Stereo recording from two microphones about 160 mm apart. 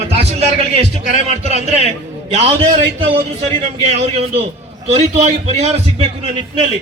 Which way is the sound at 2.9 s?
35° right (ahead or behind).